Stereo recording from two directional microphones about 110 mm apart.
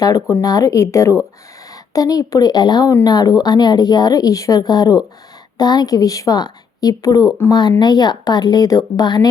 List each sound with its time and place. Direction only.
0.0 s speech: 30° left (ahead or behind)